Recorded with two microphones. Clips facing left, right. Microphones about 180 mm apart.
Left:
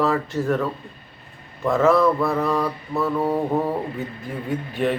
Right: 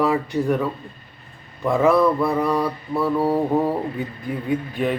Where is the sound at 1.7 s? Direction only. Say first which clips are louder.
Even; 15° right (ahead or behind).